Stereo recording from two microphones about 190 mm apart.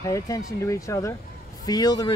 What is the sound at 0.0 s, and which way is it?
Speech, 15° left (ahead or behind).